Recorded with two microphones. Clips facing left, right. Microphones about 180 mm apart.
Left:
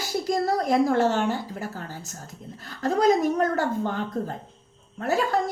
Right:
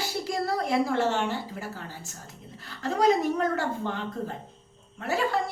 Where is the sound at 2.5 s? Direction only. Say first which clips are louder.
Left 4 dB; 45° left (ahead or behind).